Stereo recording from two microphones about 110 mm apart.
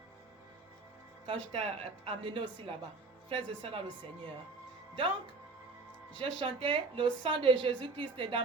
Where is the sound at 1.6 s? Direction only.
65° right (ahead or behind).